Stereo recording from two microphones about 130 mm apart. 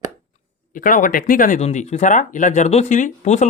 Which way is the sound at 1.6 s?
55° left (ahead or behind).